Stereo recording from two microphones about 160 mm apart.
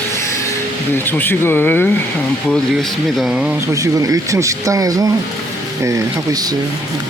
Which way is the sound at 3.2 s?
5° right (ahead or behind).